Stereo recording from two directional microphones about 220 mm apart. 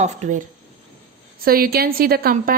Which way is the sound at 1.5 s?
40° right (ahead or behind).